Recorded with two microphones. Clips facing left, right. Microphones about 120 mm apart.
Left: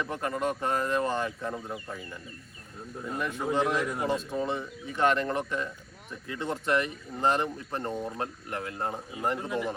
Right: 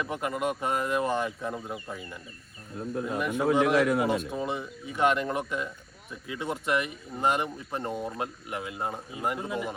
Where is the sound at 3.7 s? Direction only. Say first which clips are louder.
Right 6 dB; 80° right.